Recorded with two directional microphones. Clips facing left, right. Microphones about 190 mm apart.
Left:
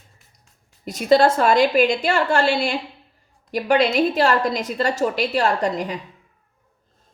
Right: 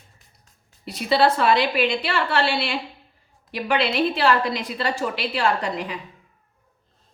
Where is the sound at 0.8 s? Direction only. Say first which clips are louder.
Left 4 dB; 45° left (ahead or behind).